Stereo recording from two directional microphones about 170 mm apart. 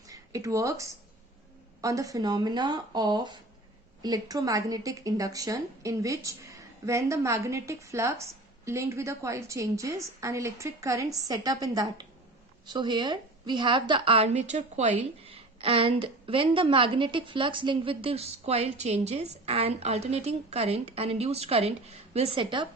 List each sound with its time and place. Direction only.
0.1 s a woman's voice: 20° right (ahead or behind)